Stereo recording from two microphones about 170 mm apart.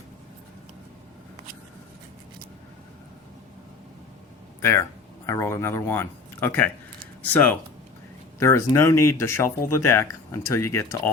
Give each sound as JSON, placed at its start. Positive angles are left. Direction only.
{"t": 4.6, "sound": "speech", "side_deg": 15}
{"t": 8.4, "sound": "speech", "side_deg": 15}